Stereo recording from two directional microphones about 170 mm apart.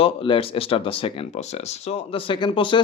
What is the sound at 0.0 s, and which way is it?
Speech, 30° left (ahead or behind).